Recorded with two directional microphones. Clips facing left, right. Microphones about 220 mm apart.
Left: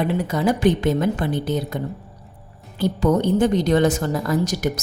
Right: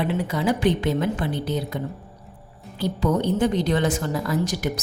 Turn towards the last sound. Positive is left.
turn(degrees=45)  # may be behind; listen again after turning